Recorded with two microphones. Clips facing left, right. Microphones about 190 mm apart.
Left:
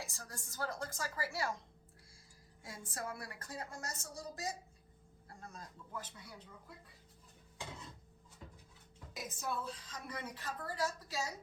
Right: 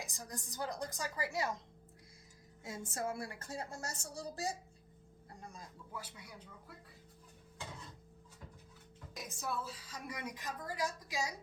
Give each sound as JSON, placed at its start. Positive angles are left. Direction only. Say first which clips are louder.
{"t": 0.0, "sound": "a woman's voice", "louder": "right 3 dB", "side_deg": -15}
{"t": 2.6, "sound": "a woman's voice", "louder": "right 5 dB", "side_deg": -25}
{"t": 5.3, "sound": "speech", "louder": "even", "side_deg": -15}
{"t": 9.1, "sound": "a woman's voice", "louder": "even", "side_deg": 0}